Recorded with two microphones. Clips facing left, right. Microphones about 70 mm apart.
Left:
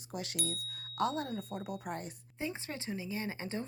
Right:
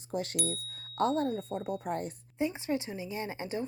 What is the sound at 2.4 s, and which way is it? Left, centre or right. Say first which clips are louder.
Speech: right 8 dB; centre.